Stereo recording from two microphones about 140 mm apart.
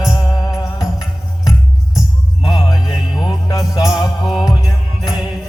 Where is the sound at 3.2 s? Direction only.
25° left (ahead or behind).